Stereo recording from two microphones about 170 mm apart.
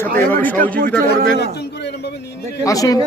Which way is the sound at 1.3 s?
75° left (ahead or behind).